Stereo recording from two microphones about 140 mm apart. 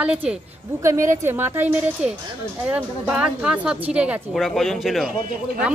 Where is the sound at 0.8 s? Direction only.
20° right (ahead or behind).